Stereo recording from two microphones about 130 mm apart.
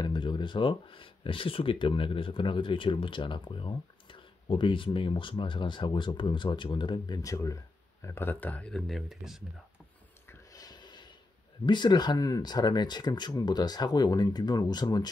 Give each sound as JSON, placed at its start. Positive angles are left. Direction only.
{"t": 0.0, "sound": "speech", "side_deg": 35}
{"t": 10.2, "sound": "a sound", "side_deg": 30}
{"t": 11.6, "sound": "speech", "side_deg": 35}